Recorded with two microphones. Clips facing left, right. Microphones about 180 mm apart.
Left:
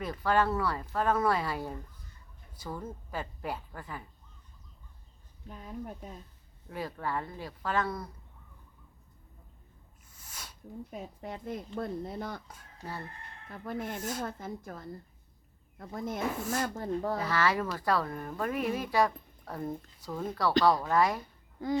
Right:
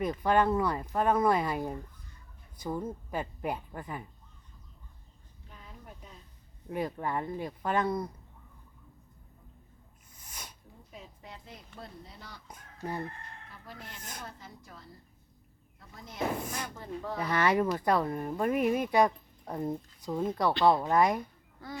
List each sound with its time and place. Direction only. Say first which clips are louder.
0.0 s speech: right 2 dB; 15° right (ahead or behind)
5.5 s speech: left 10 dB; 45° left (ahead or behind)
6.7 s speech: right 3 dB; 20° right (ahead or behind)
10.2 s a sound: right 1 dB; 15° right (ahead or behind)
10.9 s speech: left 5 dB; 50° left (ahead or behind)
12.5 s speech: right 5 dB; 20° right (ahead or behind)
13.5 s speech: left 14 dB; 50° left (ahead or behind)
17.2 s speech: right 7 dB; 20° right (ahead or behind)